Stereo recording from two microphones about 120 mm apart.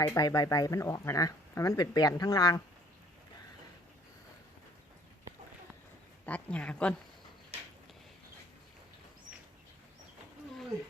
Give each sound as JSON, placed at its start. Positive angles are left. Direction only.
{"t": 0.0, "sound": "speech", "side_deg": 30}
{"t": 6.2, "sound": "a woman's voice", "side_deg": 10}